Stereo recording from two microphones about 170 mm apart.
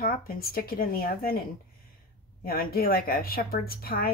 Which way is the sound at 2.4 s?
60° left (ahead or behind).